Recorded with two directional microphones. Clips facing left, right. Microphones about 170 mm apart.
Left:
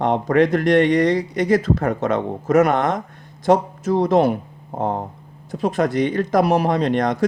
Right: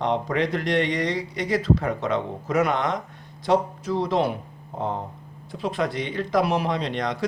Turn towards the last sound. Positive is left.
turn(degrees=45)  # may be behind; listen again after turning